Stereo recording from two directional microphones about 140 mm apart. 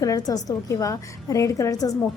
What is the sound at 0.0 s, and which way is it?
A woman's voice, 25° left (ahead or behind).